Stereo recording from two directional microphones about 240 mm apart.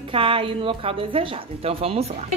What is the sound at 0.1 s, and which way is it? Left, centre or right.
A woman's voice, right.